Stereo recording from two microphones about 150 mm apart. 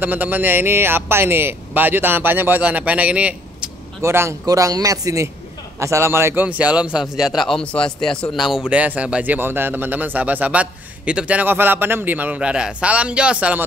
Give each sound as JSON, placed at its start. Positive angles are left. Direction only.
{"t": 0.0, "sound": "a man's voice", "side_deg": -10}